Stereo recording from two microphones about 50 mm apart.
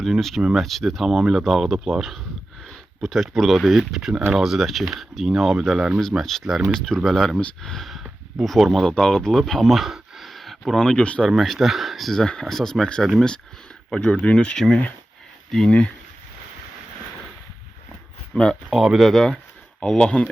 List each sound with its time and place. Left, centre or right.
0.0 s speech: centre
8.9 s speech: centre
10.8 s speech: centre
11.3 s speech: centre
12.1 s speech: centre
18.3 s speech: centre
18.7 s speech: centre
19.8 s speech: centre